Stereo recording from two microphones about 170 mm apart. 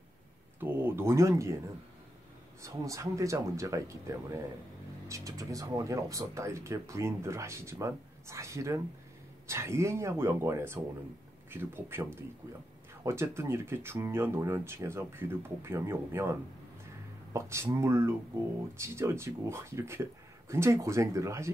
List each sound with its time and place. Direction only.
0.6 s speech: 10° right (ahead or behind)
2.6 s speech: 20° right (ahead or behind)